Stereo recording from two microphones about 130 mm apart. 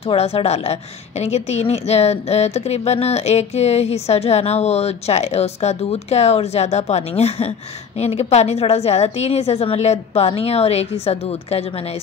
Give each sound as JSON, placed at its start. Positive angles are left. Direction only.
{"t": 0.0, "sound": "a woman's voice", "side_deg": 50}